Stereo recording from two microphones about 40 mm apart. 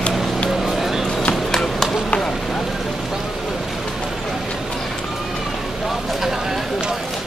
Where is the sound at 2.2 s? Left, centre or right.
Centre.